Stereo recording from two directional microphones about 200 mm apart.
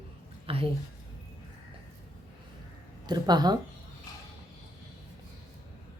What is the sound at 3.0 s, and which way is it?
Speech, 20° right (ahead or behind).